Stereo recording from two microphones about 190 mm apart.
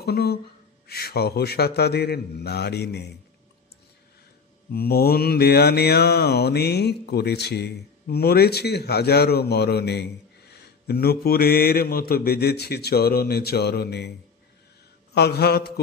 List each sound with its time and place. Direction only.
0.0 s a sound: 55° left (ahead or behind)
0.8 s mantra: 55° left (ahead or behind)
4.6 s mantra: 55° left (ahead or behind)
15.1 s mantra: 55° left (ahead or behind)